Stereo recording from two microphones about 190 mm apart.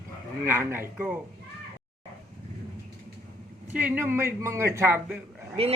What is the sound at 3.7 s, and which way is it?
Speech, 10° right (ahead or behind).